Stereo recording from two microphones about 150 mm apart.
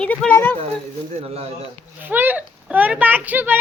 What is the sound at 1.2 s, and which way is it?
Speech, 40° right (ahead or behind).